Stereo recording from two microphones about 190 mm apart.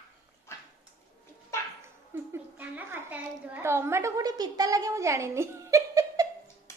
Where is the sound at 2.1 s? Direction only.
10° right (ahead or behind).